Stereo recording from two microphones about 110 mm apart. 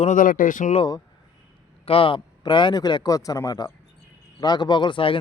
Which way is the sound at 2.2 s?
40° left (ahead or behind).